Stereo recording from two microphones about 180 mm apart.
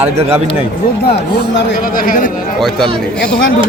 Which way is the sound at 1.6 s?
55° left (ahead or behind).